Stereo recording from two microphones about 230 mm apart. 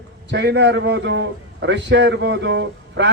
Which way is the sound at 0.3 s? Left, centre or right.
Right.